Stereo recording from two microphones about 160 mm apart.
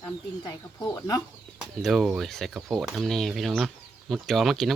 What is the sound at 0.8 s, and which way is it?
Speech, 20° left (ahead or behind).